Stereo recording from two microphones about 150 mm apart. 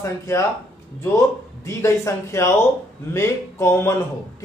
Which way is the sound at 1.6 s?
20° left (ahead or behind).